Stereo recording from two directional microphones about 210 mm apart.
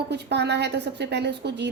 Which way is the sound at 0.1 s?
55° right (ahead or behind).